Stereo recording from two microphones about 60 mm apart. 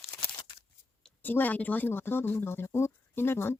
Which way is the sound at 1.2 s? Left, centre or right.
Left.